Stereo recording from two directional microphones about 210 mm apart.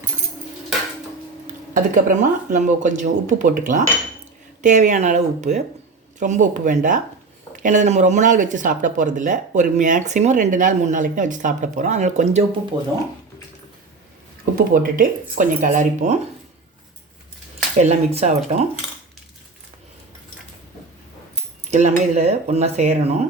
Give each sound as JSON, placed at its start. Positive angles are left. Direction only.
{"t": 1.7, "sound": "speech", "side_deg": -40}
{"t": 4.6, "sound": "speech", "side_deg": -35}
{"t": 14.5, "sound": "speech", "side_deg": -40}
{"t": 17.7, "sound": "speech", "side_deg": -30}
{"t": 21.7, "sound": "speech", "side_deg": -35}